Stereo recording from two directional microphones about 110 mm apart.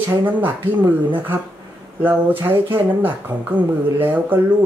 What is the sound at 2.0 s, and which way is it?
Speech, 15° right (ahead or behind).